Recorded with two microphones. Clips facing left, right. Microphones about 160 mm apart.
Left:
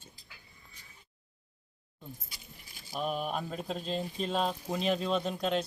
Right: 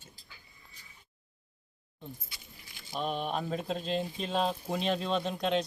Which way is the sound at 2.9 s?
5° left (ahead or behind).